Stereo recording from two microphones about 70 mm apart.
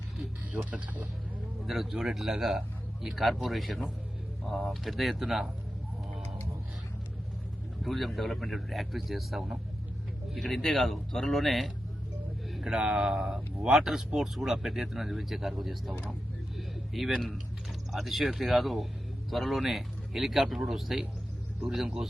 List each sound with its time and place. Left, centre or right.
0.5 s speech: right
1.6 s speech: centre
7.8 s speech: centre
16.6 s a sound: centre
17.9 s speech: centre